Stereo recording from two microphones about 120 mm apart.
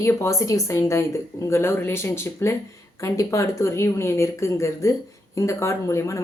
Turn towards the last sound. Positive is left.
turn(degrees=25)  # may be behind; listen again after turning